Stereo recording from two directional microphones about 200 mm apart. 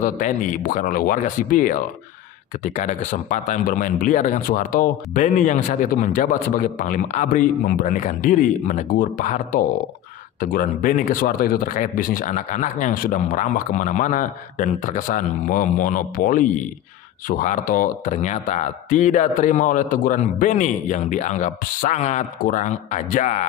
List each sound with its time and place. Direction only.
0.0 s speech: 40° left (ahead or behind)